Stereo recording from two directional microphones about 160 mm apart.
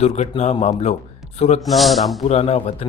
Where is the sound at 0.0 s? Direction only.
40° left (ahead or behind).